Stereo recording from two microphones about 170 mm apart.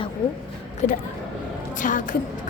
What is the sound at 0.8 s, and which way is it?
A woman's voice, 45° left (ahead or behind).